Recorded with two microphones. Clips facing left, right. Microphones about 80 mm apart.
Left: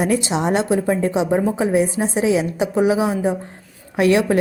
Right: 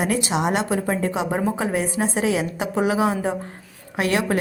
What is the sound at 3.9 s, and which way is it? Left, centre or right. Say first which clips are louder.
Speech: left 6 dB; right.